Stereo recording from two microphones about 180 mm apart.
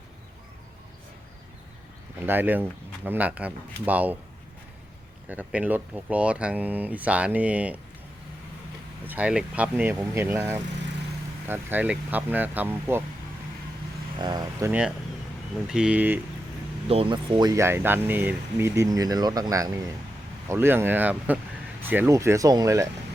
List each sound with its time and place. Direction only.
2.1 s speech: 10° right (ahead or behind)
5.3 s speech: 10° right (ahead or behind)
9.0 s speech: 10° right (ahead or behind)
14.2 s speech: 20° right (ahead or behind)
14.7 s speech: 5° right (ahead or behind)
16.9 s speech: 30° right (ahead or behind)